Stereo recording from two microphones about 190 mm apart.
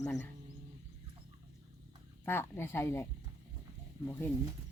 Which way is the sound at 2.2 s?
10° left (ahead or behind).